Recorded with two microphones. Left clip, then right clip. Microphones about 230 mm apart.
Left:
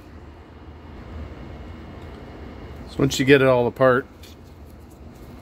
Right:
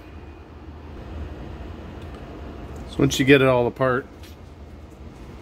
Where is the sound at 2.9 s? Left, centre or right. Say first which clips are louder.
Even; centre.